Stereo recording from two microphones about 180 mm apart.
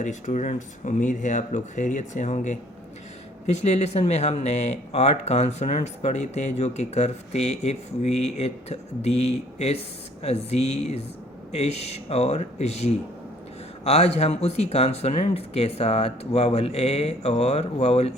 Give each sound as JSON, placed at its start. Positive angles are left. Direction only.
{"t": 0.0, "sound": "speech", "side_deg": 45}